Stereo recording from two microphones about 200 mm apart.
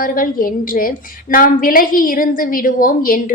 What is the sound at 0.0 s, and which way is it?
A woman's voice, 45° left (ahead or behind).